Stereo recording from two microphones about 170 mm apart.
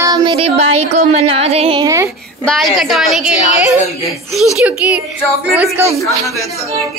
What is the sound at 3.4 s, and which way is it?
Speech, 45° left (ahead or behind).